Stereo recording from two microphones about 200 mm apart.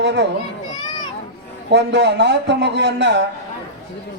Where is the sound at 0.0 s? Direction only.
60° right (ahead or behind).